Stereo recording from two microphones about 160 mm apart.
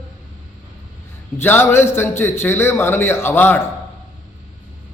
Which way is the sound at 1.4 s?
15° left (ahead or behind).